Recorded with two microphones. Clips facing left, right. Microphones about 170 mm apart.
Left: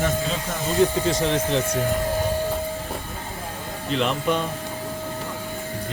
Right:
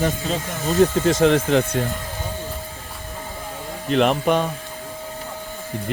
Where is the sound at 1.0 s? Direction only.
60° right (ahead or behind).